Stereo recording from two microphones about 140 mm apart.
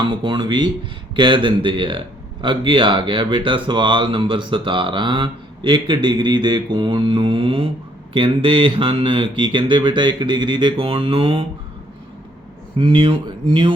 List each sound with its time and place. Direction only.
0.0 s speech: 35° right (ahead or behind)
12.7 s speech: 40° right (ahead or behind)